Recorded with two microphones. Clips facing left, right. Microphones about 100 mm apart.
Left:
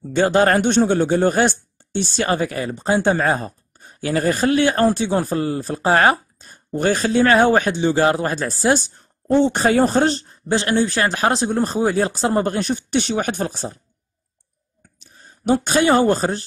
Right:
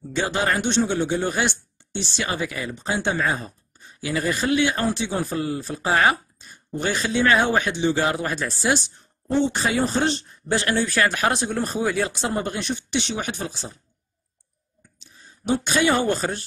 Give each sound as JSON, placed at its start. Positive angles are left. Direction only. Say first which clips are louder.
{"t": 0.1, "sound": "speech", "louder": "left 8 dB", "side_deg": 50}
{"t": 15.0, "sound": "speech", "louder": "left 2 dB", "side_deg": 50}